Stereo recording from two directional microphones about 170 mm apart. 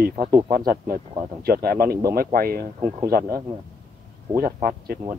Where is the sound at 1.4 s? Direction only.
65° right (ahead or behind).